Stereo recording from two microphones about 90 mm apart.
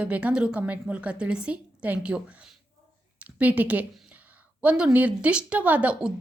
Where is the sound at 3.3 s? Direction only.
15° right (ahead or behind).